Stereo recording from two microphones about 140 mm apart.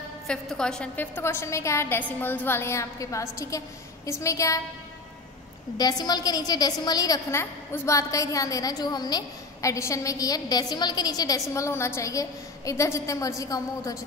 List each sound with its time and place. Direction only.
0.3 s a woman's voice: 5° left (ahead or behind); by 4.6 s 20° left (ahead or behind)
5.8 s a woman's voice: 30° left (ahead or behind)